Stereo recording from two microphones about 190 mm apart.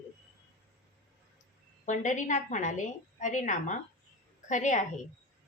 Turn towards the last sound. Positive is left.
turn(degrees=40)  # may be behind; listen again after turning